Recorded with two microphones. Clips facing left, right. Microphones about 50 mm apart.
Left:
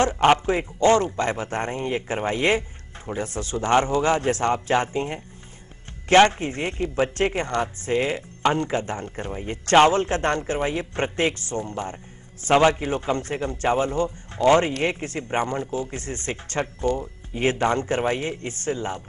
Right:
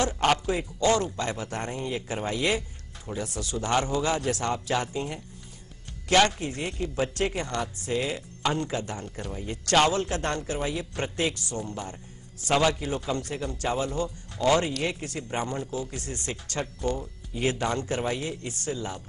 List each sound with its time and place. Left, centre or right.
0.0 s a man's voice: left